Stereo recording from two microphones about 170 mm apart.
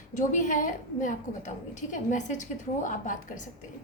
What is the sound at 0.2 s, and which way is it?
A woman's voice, 50° left (ahead or behind).